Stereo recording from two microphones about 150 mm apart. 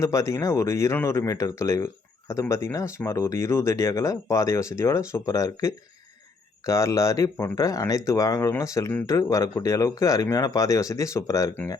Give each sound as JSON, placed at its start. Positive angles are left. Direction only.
{"t": 0.0, "sound": "speech", "side_deg": 20}